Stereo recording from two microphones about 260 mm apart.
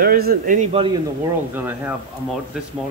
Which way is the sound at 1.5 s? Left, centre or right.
Centre.